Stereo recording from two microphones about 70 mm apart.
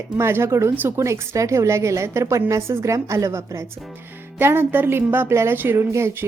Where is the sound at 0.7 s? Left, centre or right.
Right.